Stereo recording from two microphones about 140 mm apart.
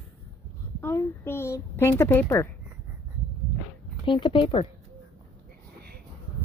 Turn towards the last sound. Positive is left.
turn(degrees=40)  # may be behind; listen again after turning